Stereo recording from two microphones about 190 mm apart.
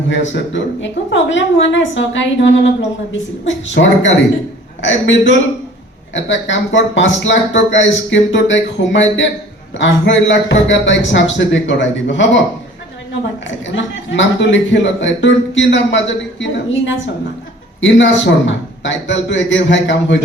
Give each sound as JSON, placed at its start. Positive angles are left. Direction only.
{"t": 0.1, "sound": "a man's voice", "side_deg": 75}
{"t": 13.7, "sound": "a man's voice", "side_deg": 75}